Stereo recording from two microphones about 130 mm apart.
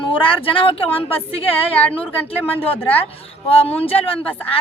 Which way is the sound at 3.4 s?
45° left (ahead or behind).